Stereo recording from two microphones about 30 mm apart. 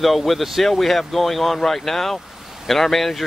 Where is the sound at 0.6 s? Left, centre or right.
Centre.